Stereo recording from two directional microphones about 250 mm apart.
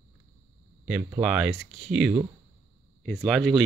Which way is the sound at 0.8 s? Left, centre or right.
Centre.